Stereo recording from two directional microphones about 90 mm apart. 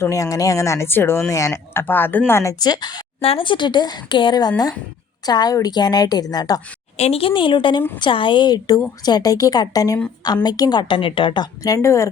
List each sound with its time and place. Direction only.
0.0 s speech: 35° left (ahead or behind)
1.8 s speech: 20° left (ahead or behind)
2.4 s speech: 45° left (ahead or behind)
3.2 s speech: 85° left; by 6.6 s 45° left (ahead or behind)
7.1 s a woman's voice: 85° left; by 11.4 s 65° left (ahead or behind)
11.6 s speech: 40° left (ahead or behind)